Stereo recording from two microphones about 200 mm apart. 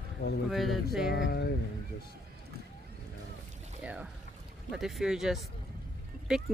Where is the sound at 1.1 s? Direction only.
60° left (ahead or behind).